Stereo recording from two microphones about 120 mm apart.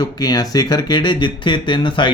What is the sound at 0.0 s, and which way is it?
Speech, 35° left (ahead or behind).